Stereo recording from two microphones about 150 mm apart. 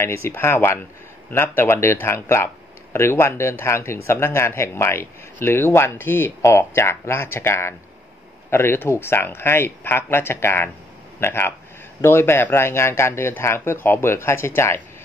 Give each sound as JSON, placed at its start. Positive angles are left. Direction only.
{"t": 0.0, "sound": "speech", "side_deg": 15}